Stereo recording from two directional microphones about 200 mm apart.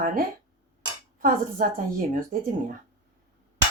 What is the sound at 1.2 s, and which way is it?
Speech, 45° right (ahead or behind).